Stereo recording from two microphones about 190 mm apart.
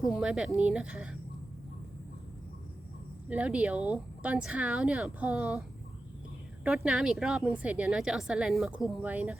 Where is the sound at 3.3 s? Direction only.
5° right (ahead or behind).